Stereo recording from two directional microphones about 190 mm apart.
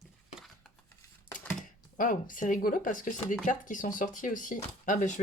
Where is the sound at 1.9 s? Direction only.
45° left (ahead or behind).